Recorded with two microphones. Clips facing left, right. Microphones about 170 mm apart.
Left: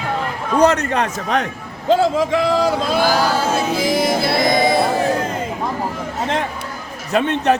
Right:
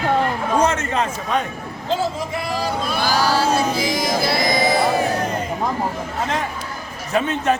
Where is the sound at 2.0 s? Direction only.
90° left.